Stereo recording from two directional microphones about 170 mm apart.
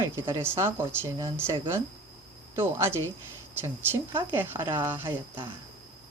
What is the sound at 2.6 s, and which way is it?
Speech, 15° right (ahead or behind).